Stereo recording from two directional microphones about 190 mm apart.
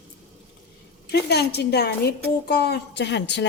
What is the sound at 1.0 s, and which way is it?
A woman's voice, 60° left (ahead or behind).